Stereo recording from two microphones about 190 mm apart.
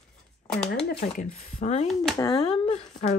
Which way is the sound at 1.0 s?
40° left (ahead or behind).